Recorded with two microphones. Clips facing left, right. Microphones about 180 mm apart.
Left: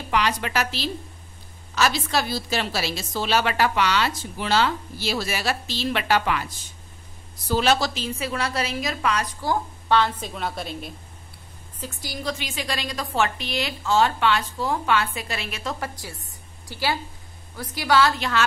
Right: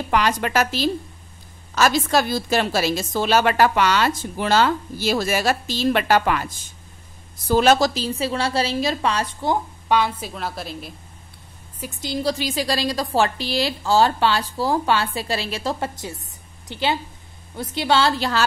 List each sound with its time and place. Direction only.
0.1 s a woman's voice: 45° right (ahead or behind)
7.4 s a woman's voice: 45° right (ahead or behind); by 10.9 s centre (ahead or behind)
11.8 s a woman's voice: 20° right (ahead or behind)
12.2 s a woman's voice: 35° right (ahead or behind)